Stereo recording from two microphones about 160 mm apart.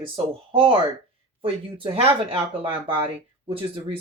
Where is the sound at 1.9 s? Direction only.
35° right (ahead or behind).